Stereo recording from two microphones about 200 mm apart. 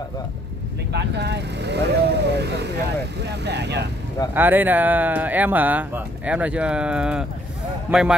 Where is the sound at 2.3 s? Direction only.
55° right (ahead or behind).